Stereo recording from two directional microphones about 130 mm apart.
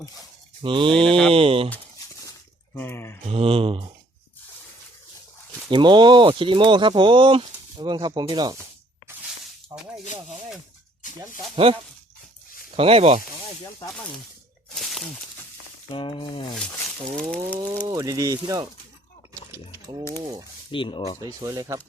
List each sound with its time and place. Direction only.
0.6 s speech: 40° right (ahead or behind)
1.0 s mantra: 5° left (ahead or behind)
1.3 s mantra: 45° right (ahead or behind)
2.7 s speech: 20° left (ahead or behind)
3.2 s mantra: 45° right (ahead or behind)
5.7 s speech: 35° right (ahead or behind)
11.5 s mantra: 45° right (ahead or behind)
14.8 s a sound: centre (ahead or behind)
15.9 s speech: 40° left (ahead or behind)
17.2 s speech: 10° left (ahead or behind)
17.8 s speech: 30° right (ahead or behind)
20.7 s speech: 40° left (ahead or behind)
21.2 s speech: 30° right (ahead or behind)